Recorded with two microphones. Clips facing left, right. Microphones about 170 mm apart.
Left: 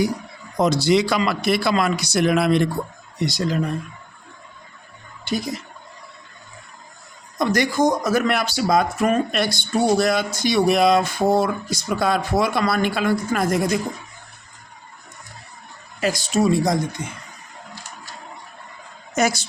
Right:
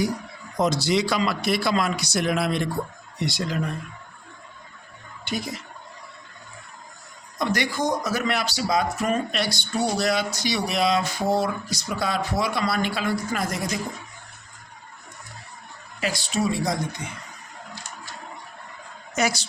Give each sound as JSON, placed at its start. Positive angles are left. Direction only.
{"t": 0.6, "sound": "a man's voice", "side_deg": 65}
{"t": 3.2, "sound": "speech", "side_deg": 40}
{"t": 5.3, "sound": "speech", "side_deg": 35}
{"t": 7.3, "sound": "speech", "side_deg": 45}
{"t": 16.0, "sound": "speech", "side_deg": 45}
{"t": 19.1, "sound": "speech", "side_deg": 50}